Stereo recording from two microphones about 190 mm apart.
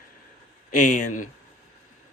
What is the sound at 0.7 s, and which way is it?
Speech, 40° left (ahead or behind).